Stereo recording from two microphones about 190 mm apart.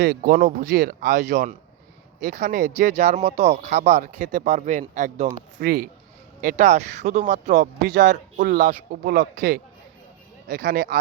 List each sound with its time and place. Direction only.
0.0 s speech: 50° right (ahead or behind)
5.6 s speech: 55° right (ahead or behind)
9.0 s speech: 55° right (ahead or behind)